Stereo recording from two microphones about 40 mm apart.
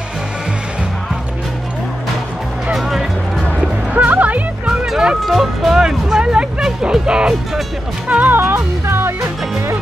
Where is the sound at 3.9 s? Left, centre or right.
Right.